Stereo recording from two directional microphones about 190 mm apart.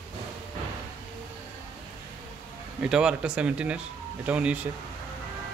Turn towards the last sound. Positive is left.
turn(degrees=-5)  # may be behind; listen again after turning